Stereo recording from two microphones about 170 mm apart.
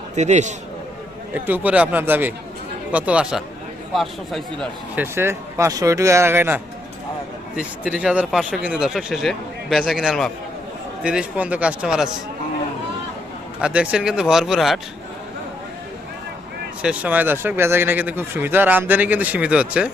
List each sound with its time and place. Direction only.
0.2 s a man's voice: 45° right (ahead or behind)
1.3 s speech: 10° right (ahead or behind)
4.9 s speech: 15° right (ahead or behind)
13.6 s speech: 5° right (ahead or behind)
16.8 s speech: 10° right (ahead or behind)